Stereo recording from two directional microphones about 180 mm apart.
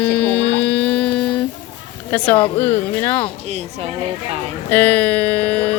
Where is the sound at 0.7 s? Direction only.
10° left (ahead or behind).